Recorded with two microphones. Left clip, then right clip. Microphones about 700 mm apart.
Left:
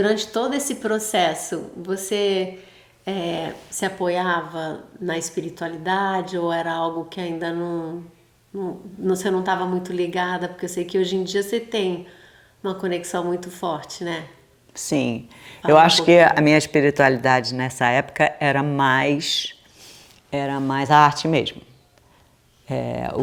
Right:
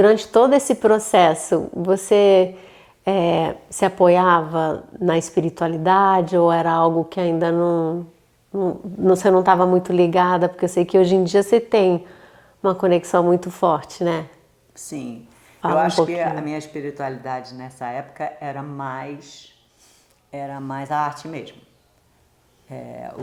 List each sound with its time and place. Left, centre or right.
0.0 s a woman's voice: right
14.8 s speech: left
20.3 s speech: left
22.7 s speech: left